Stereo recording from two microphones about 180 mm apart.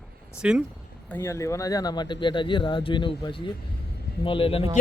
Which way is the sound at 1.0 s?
15° left (ahead or behind).